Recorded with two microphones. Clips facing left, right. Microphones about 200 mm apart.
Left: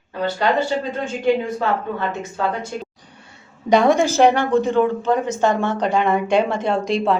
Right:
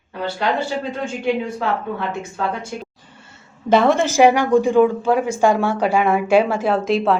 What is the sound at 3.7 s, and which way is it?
A woman's voice, centre (ahead or behind).